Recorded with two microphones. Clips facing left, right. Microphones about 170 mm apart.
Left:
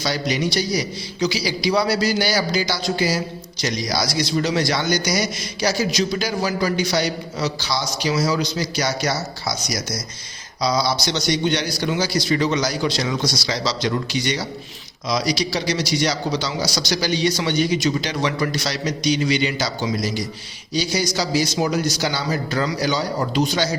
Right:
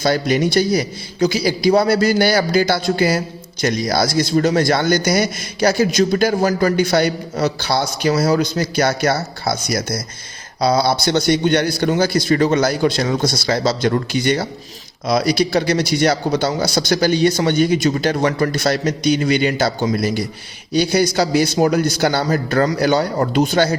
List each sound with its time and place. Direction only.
0.0 s a man's voice: 50° right (ahead or behind)